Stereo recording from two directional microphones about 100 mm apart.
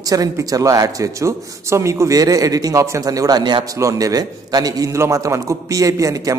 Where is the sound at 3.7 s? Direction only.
35° right (ahead or behind).